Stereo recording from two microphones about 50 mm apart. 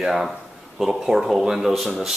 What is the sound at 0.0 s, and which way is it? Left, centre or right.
Speech, centre.